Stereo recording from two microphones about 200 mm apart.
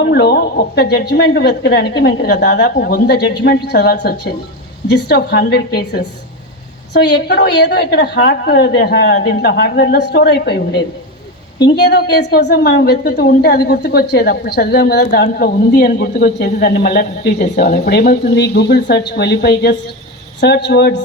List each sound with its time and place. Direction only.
0.0 s a woman's voice: 55° left (ahead or behind)